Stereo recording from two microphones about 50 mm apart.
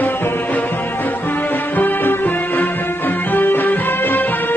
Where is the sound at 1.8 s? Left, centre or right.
Left.